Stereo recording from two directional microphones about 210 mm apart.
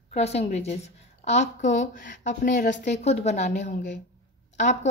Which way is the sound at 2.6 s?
55° left (ahead or behind).